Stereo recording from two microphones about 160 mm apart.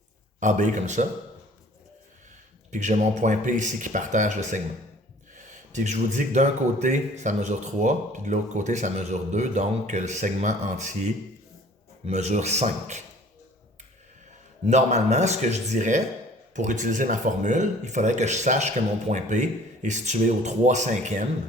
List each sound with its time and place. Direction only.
0.3 s speech: 50° right (ahead or behind)
2.6 s speech: 50° right (ahead or behind)
5.7 s speech: 50° right (ahead or behind)
12.0 s speech: 45° right (ahead or behind)
14.7 s speech: 45° right (ahead or behind)